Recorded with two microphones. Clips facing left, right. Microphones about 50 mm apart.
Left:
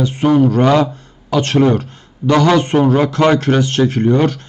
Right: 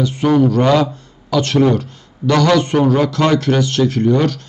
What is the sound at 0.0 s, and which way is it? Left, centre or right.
Speech, left.